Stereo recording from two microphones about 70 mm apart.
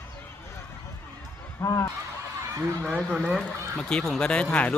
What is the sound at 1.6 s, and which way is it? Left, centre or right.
Honk, left.